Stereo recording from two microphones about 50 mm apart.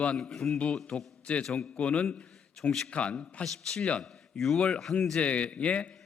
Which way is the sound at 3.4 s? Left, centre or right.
Centre.